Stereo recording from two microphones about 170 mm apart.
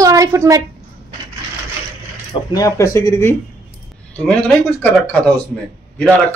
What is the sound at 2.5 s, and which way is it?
Speech, 20° left (ahead or behind).